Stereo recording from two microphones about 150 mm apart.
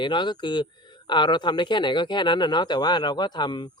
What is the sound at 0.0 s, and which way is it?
Speech, 30° left (ahead or behind).